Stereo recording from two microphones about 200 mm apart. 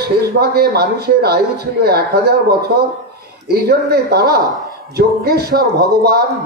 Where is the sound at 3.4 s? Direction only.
50° right (ahead or behind).